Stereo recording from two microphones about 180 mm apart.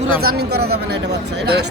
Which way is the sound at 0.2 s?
60° right (ahead or behind).